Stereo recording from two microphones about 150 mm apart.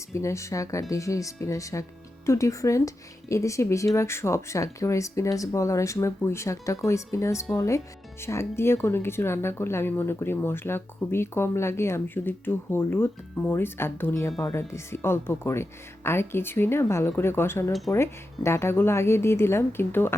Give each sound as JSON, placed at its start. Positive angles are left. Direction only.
{"t": 0.1, "sound": "speech", "side_deg": 20}
{"t": 17.7, "sound": "speech", "side_deg": 0}
{"t": 17.9, "sound": "speech", "side_deg": 15}